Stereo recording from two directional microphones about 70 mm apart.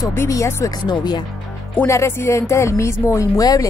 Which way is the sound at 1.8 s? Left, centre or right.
Left.